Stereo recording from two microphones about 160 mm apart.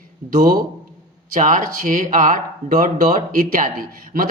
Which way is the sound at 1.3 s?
55° right (ahead or behind).